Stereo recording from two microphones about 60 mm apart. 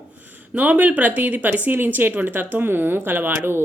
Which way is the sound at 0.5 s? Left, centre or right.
Right.